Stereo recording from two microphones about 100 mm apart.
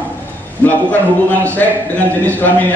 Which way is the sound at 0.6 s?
20° left (ahead or behind).